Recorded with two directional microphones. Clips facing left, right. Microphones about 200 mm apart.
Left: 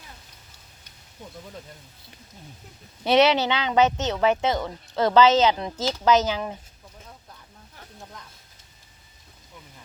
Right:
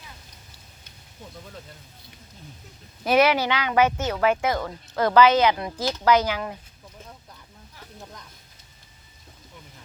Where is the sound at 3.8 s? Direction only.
10° right (ahead or behind).